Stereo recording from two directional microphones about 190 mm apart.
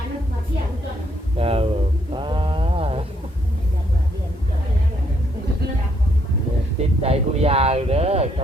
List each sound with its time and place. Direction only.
1.4 s speech: 30° right (ahead or behind)
2.1 s a sound: 25° right (ahead or behind)
7.0 s speech: 30° right (ahead or behind)